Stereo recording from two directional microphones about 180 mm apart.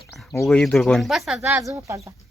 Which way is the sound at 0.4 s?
5° left (ahead or behind).